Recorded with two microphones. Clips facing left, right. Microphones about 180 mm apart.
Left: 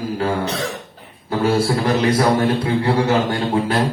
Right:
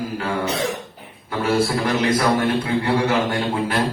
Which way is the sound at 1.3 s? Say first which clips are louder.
Left 2 dB; 30° left (ahead or behind).